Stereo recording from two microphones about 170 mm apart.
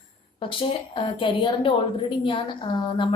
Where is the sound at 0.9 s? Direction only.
30° left (ahead or behind).